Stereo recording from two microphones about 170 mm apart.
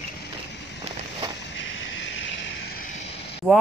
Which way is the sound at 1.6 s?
90° left.